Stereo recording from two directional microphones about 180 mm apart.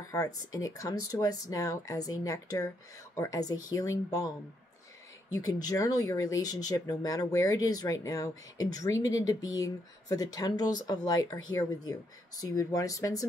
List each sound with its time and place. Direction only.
0.1 s speech: 20° left (ahead or behind)
5.3 s speech: 20° left (ahead or behind)